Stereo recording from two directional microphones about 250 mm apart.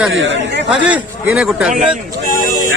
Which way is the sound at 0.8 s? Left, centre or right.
Centre.